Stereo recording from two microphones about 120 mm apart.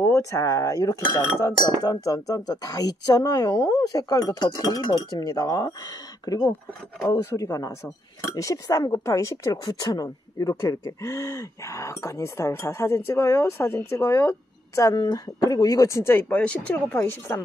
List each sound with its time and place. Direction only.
0.0 s cutlery: 25° left (ahead or behind)
6.2 s speech: 30° left (ahead or behind)
15.0 s speech: 35° left (ahead or behind); by 17.4 s 15° left (ahead or behind)